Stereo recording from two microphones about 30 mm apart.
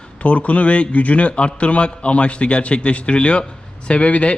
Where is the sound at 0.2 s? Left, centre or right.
Left.